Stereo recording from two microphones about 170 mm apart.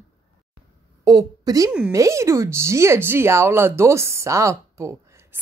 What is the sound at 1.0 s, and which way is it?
A woman's voice, 20° right (ahead or behind).